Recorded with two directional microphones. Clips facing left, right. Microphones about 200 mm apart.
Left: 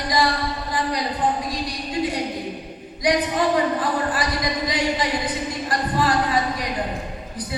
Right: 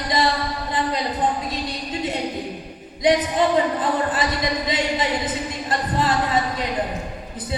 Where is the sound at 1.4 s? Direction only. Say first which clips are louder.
Even; 25° right (ahead or behind).